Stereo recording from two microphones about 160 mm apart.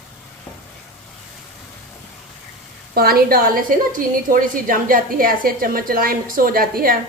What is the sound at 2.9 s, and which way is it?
A woman's voice, 70° right (ahead or behind).